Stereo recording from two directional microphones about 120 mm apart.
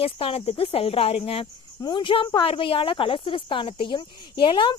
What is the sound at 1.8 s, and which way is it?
Speech, 40° left (ahead or behind).